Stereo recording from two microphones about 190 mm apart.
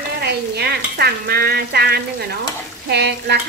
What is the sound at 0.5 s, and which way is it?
Frying, 60° right (ahead or behind).